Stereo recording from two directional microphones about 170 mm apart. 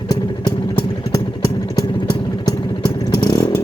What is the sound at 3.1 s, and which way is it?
Motorcycle, 25° left (ahead or behind).